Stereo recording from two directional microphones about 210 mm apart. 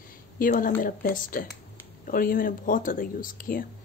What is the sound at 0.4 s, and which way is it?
Speech, 40° left (ahead or behind).